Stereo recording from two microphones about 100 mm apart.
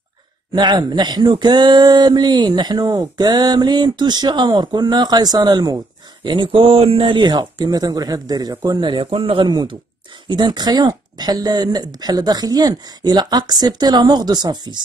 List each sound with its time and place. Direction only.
0.6 s speech: 45° right (ahead or behind)
6.2 s speech: 55° right (ahead or behind)